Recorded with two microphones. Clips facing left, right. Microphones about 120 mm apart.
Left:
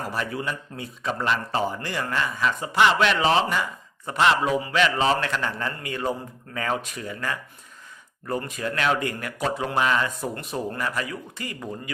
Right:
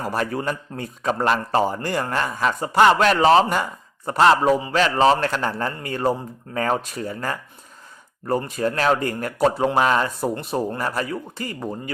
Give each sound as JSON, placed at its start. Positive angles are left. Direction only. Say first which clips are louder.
{"t": 0.0, "sound": "a man's voice", "louder": "right 5 dB", "side_deg": -40}